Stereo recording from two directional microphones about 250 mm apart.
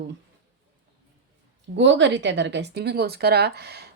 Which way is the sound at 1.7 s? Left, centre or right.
Right.